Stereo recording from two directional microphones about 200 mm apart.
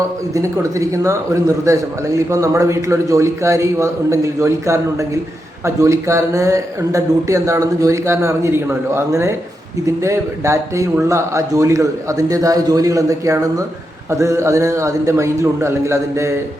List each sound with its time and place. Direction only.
0.3 s a man's voice: 15° right (ahead or behind)